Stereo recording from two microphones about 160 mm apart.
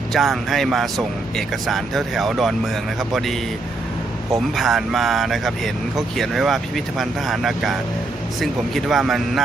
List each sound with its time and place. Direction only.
0.1 s speech: centre (ahead or behind)
4.5 s speech: centre (ahead or behind)